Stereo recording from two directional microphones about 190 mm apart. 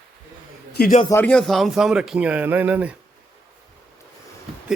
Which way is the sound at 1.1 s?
10° left (ahead or behind).